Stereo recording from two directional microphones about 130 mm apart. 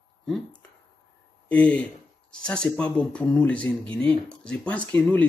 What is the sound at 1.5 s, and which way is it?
Speech, 10° left (ahead or behind).